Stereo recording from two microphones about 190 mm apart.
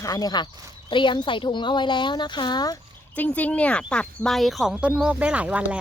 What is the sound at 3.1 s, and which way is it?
Speech, 10° left (ahead or behind).